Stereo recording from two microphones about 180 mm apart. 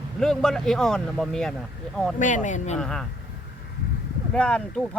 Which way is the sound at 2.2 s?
45° left (ahead or behind).